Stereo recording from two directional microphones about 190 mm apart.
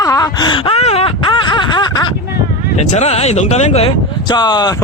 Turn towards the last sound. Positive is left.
turn(degrees=20)  # may be behind; listen again after turning